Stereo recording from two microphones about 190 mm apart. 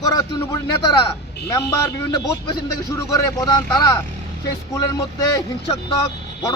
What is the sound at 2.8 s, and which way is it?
Speech, 15° left (ahead or behind).